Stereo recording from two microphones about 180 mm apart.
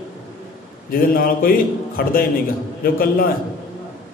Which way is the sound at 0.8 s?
55° left (ahead or behind).